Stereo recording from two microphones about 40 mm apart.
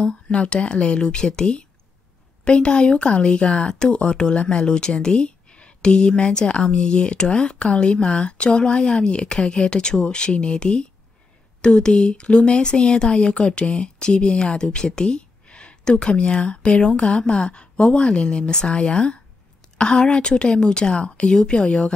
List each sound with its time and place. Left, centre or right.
0.3 s speech: left